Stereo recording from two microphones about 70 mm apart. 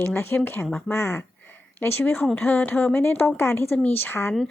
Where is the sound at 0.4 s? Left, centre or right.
Left.